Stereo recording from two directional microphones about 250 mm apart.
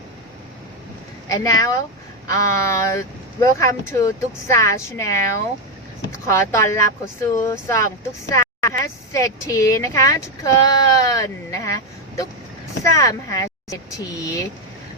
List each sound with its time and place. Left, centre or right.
1.3 s a woman's voice: centre